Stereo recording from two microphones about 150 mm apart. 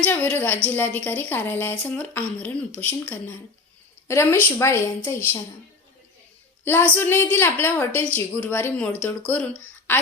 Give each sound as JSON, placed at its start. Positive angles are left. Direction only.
{"t": 0.0, "sound": "a woman's voice", "side_deg": 10}
{"t": 6.7, "sound": "a woman's voice", "side_deg": 15}